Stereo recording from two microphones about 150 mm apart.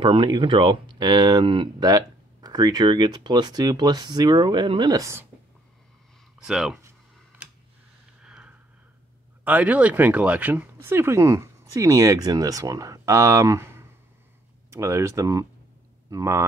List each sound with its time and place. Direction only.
0.0 s speech: 35° right (ahead or behind)
6.3 s speech: 5° right (ahead or behind)
8.2 s a sound: 5° right (ahead or behind)
9.4 s speech: 10° right (ahead or behind)